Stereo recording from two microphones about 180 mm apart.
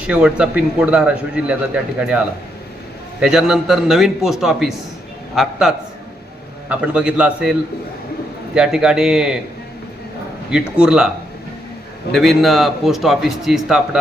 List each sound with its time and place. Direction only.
0.0 s a man's voice: 5° right (ahead or behind)
8.5 s a man's voice: 5° right (ahead or behind)
10.8 s a man's voice: 5° right (ahead or behind)
12.1 s a man's voice: centre (ahead or behind)